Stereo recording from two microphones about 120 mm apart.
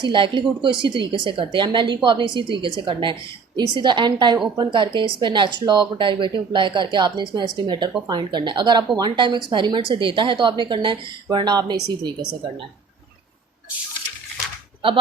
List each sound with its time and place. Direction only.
0.0 s speech: 45° right (ahead or behind)